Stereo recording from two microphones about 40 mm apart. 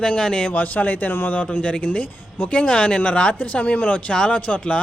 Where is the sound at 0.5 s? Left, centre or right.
Left.